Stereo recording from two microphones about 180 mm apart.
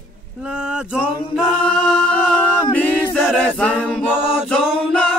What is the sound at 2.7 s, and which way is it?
A capella, 5° left (ahead or behind).